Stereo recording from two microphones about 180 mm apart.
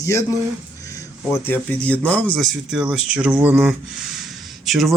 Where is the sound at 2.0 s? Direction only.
5° left (ahead or behind).